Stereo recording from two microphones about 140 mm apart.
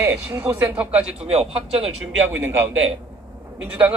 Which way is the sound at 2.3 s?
15° right (ahead or behind).